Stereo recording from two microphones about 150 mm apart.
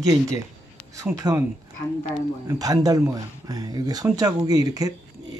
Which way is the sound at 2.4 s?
25° right (ahead or behind).